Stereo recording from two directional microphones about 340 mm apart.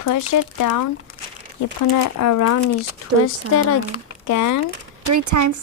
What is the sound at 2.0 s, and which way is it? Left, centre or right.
Speech, left.